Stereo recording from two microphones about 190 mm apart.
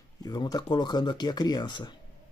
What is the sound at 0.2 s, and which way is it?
Speech, 20° left (ahead or behind).